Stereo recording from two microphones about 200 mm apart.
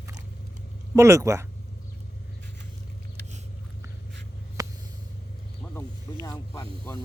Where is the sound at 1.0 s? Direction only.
15° right (ahead or behind).